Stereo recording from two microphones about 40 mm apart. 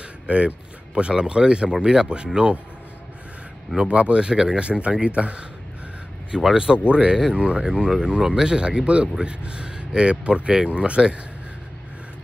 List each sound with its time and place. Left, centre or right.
0.3 s speech: right
3.7 s speech: right
6.3 s speech: centre
6.8 s speech: right
7.6 s speech: centre
8.5 s speech: right